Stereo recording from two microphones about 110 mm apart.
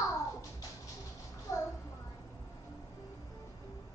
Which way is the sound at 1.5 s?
30° left (ahead or behind).